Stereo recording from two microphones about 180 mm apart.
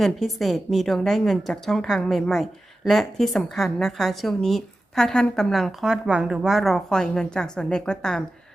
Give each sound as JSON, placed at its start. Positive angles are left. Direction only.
{"t": 0.0, "sound": "a woman's voice", "side_deg": 0}